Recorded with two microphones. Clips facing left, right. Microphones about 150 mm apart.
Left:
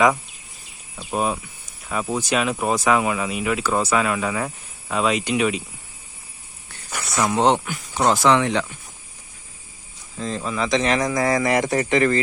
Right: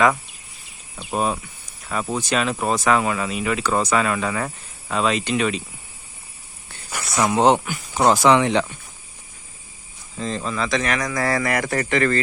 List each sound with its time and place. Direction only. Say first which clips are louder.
0.9 s speech: even; 5° left (ahead or behind)
7.2 s speech: right 2 dB; 10° right (ahead or behind)
10.2 s speech: even; 5° left (ahead or behind)